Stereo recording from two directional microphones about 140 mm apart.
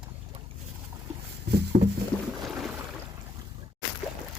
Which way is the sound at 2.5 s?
5° right (ahead or behind).